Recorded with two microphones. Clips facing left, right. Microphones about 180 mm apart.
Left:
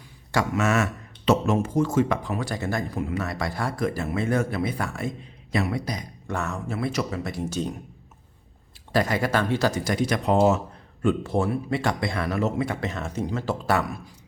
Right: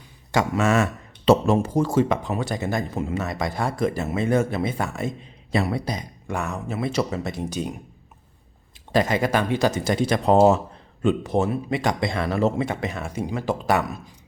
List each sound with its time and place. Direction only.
0.3 s speech: 25° right (ahead or behind)
2.0 s speech: 20° right (ahead or behind)
6.2 s speech: 15° right (ahead or behind)
8.9 s speech: 20° right (ahead or behind)
11.0 s speech: 20° right (ahead or behind)